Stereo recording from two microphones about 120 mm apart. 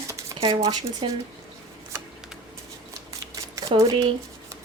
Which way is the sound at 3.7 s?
65° right (ahead or behind).